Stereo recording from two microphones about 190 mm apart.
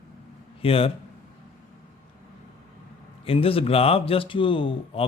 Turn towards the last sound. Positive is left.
turn(degrees=25)  # may be behind; listen again after turning